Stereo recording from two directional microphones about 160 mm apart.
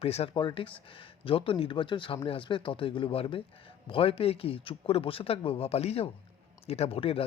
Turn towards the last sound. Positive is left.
turn(degrees=35)  # may be behind; listen again after turning